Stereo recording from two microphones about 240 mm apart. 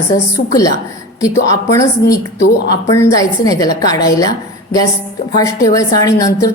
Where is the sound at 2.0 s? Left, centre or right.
Left.